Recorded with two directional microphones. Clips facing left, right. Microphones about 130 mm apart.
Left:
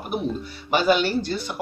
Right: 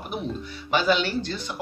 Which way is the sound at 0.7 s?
45° left (ahead or behind).